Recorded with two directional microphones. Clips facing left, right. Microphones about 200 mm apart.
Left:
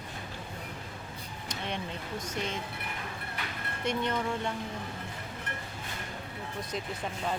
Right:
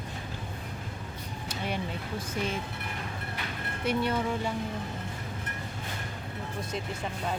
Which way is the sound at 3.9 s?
5° right (ahead or behind).